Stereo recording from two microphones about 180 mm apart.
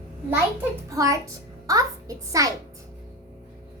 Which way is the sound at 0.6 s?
20° right (ahead or behind).